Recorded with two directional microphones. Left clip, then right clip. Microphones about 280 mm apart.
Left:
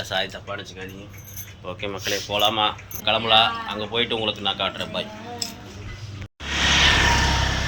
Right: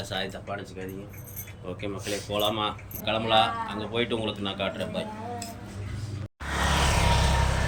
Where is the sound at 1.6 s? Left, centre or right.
Centre.